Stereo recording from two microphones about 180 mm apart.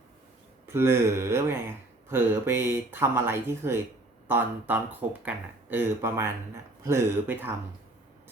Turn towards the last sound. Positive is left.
turn(degrees=-10)  # may be behind; listen again after turning